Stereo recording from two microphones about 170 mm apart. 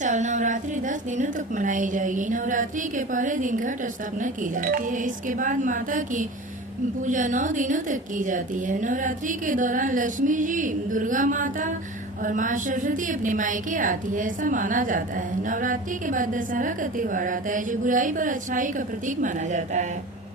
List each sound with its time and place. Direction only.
0.0 s a woman's voice: 45° right (ahead or behind)